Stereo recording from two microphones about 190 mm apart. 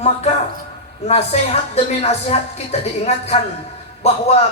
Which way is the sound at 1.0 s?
35° left (ahead or behind).